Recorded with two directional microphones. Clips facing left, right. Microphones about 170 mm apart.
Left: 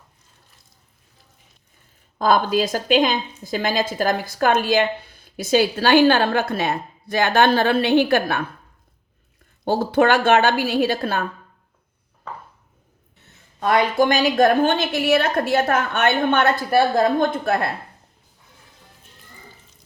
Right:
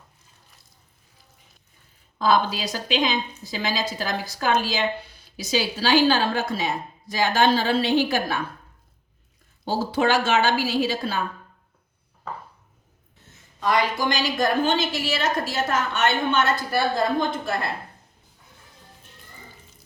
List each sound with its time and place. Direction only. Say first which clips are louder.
2.1 s a woman's voice: left 4 dB; 50° left (ahead or behind)
9.6 s a woman's voice: left 5 dB; 60° left (ahead or behind)
13.6 s a woman's voice: left 5 dB; 55° left (ahead or behind)